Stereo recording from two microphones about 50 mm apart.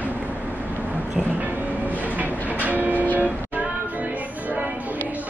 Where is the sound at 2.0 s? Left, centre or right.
Right.